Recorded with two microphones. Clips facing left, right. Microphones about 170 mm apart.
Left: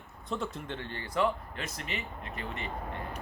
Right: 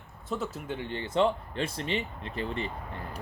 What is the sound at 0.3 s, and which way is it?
Speech, centre (ahead or behind).